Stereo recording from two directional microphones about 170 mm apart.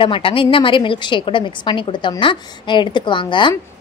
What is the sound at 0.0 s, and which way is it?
Speech, 30° left (ahead or behind).